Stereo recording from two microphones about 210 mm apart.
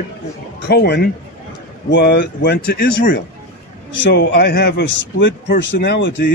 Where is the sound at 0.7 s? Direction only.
50° left (ahead or behind).